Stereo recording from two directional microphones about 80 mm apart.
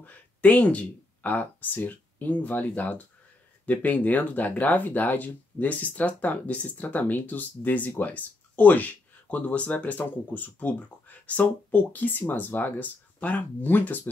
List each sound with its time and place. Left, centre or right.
0.0 s speech: centre